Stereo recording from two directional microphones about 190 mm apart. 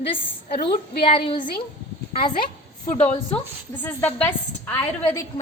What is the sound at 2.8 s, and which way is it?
Speech, 35° left (ahead or behind).